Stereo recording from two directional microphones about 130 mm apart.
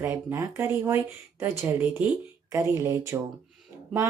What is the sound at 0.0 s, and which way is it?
Speech, 20° right (ahead or behind).